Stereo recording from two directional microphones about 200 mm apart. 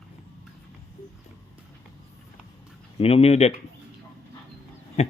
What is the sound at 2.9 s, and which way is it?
Speech, 30° left (ahead or behind).